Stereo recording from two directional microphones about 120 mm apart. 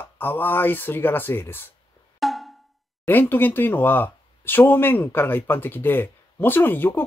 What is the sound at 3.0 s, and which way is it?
Speech, 15° left (ahead or behind).